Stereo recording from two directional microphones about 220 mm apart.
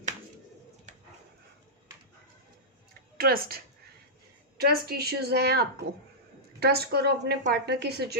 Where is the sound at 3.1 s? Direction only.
45° right (ahead or behind).